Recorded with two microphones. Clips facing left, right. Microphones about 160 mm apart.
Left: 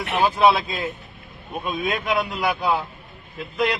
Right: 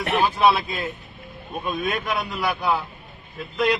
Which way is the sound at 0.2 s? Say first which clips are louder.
Left 2 dB; 15° left (ahead or behind).